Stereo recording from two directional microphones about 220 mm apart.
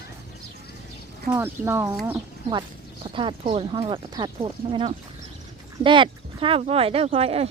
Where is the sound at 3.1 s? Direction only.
25° right (ahead or behind).